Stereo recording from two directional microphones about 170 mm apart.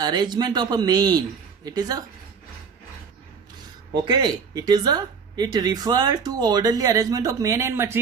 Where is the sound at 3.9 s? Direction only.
25° right (ahead or behind).